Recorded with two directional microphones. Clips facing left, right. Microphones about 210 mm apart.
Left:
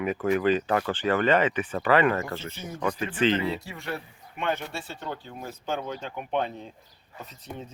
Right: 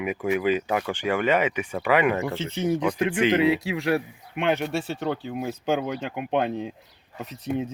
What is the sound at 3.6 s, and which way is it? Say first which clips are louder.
Speech: right 11 dB; 90° right.